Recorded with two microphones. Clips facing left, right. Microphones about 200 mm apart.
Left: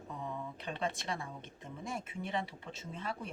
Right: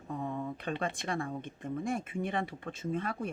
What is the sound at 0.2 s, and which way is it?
Speech, 50° right (ahead or behind).